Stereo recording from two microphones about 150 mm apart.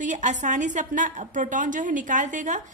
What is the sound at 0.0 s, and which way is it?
A woman's voice, 55° right (ahead or behind).